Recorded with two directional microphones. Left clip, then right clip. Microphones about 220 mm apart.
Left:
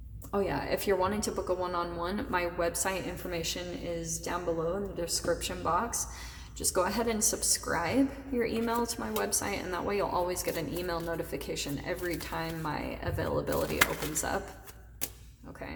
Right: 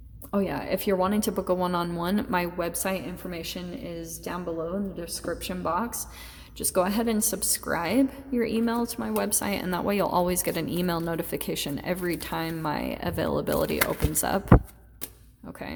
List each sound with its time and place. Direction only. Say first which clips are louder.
0.3 s a woman's voice: right 3 dB; 35° right (ahead or behind)